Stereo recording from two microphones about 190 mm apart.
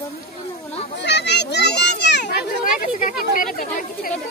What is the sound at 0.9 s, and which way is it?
Children playing, 65° left (ahead or behind).